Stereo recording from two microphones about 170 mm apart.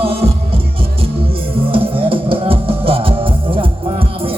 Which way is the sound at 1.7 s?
30° right (ahead or behind).